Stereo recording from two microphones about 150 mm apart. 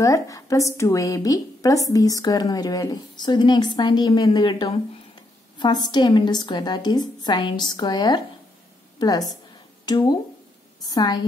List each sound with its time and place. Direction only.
0.0 s speech: 20° left (ahead or behind)
9.8 s speech: 25° left (ahead or behind)